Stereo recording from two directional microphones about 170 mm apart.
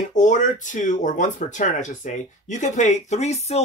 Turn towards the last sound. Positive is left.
turn(degrees=40)  # may be behind; listen again after turning